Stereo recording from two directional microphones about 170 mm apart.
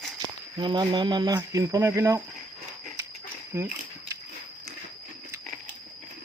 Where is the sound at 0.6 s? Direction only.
25° right (ahead or behind).